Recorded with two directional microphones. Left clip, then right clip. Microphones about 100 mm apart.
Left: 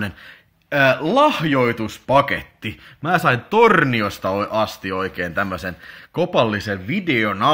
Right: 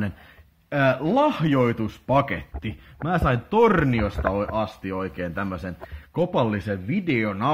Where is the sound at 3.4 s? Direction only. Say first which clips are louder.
Left 4 dB; 20° left (ahead or behind).